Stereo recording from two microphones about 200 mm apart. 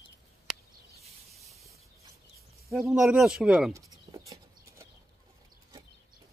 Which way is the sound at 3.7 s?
15° right (ahead or behind).